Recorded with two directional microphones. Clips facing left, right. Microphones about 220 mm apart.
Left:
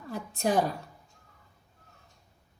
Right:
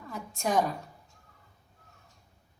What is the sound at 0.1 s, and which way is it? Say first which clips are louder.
Speech: left 2 dB; 35° left (ahead or behind).